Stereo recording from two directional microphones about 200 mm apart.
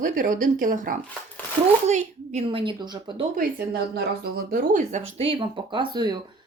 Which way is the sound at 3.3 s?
55° right (ahead or behind).